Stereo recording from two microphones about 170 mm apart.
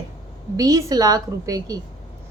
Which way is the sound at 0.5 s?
20° right (ahead or behind).